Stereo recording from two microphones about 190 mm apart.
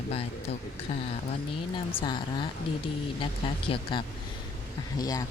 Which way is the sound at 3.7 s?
30° left (ahead or behind).